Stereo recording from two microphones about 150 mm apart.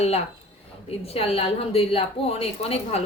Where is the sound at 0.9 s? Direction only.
40° left (ahead or behind).